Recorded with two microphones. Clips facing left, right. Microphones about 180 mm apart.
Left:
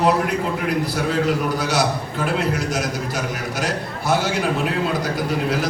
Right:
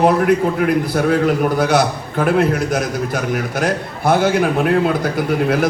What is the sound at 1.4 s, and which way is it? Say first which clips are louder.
A man's voice: right 6 dB; 55° right (ahead or behind).